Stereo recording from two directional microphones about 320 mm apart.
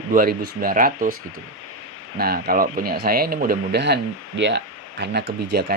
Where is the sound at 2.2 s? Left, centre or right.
Right.